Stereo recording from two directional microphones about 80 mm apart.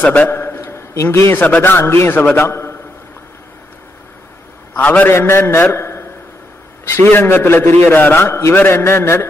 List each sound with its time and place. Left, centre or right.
0.0 s a man's voice: centre
0.3 s a man's voice: left
4.7 s a man's voice: left